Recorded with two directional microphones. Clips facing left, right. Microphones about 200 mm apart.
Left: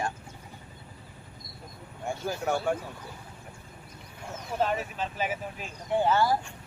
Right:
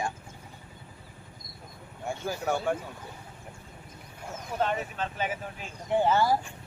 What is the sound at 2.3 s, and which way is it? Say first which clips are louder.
Speech: even; centre (ahead or behind).